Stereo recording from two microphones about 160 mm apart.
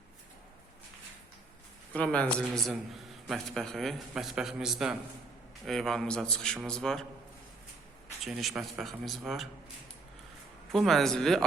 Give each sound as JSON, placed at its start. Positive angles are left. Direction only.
{"t": 1.9, "sound": "a man's voice", "side_deg": 10}
{"t": 8.2, "sound": "a man's voice", "side_deg": 0}
{"t": 10.7, "sound": "a man's voice", "side_deg": 0}